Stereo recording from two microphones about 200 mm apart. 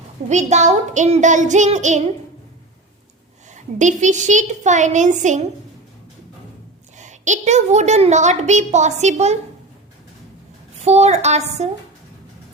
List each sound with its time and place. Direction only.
0.3 s a woman's voice: 35° right (ahead or behind)
3.5 s a woman's voice: 35° right (ahead or behind)
6.9 s a woman's voice: 35° right (ahead or behind)
10.8 s a woman's voice: 35° right (ahead or behind)